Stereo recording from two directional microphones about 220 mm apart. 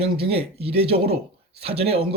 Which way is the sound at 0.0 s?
25° right (ahead or behind).